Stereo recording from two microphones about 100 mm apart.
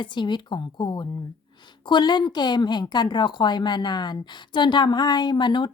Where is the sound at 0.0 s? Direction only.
50° left (ahead or behind).